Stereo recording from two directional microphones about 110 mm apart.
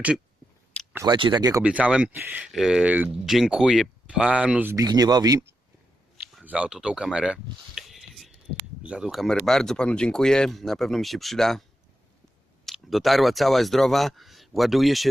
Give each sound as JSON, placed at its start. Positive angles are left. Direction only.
{"t": 1.0, "sound": "speech", "side_deg": -45}
{"t": 1.6, "sound": "speech", "side_deg": -10}
{"t": 2.5, "sound": "speech", "side_deg": -5}
{"t": 3.2, "sound": "speech", "side_deg": 0}
{"t": 4.7, "sound": "speech", "side_deg": -35}
{"t": 6.4, "sound": "speech", "side_deg": -10}
{"t": 7.8, "sound": "a sound", "side_deg": 0}
{"t": 8.8, "sound": "speech", "side_deg": -10}
{"t": 9.5, "sound": "speech", "side_deg": 5}
{"t": 12.6, "sound": "speech", "side_deg": 0}